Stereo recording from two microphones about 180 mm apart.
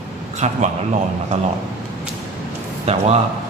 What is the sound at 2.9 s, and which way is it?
Speech, 35° right (ahead or behind).